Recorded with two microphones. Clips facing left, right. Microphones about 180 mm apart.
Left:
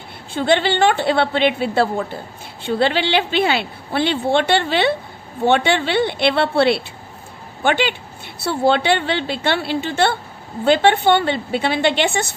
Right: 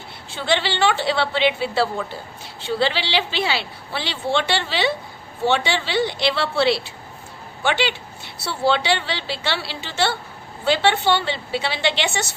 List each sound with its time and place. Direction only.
0.3 s a woman's voice: 50° left (ahead or behind)